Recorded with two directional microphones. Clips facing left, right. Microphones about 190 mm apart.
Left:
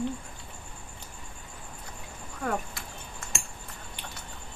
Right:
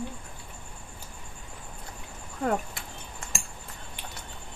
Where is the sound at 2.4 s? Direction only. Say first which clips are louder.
Right 3 dB; 25° right (ahead or behind).